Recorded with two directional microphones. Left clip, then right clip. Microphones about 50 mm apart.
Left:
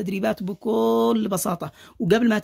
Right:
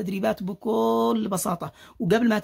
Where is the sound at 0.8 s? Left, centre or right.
Left.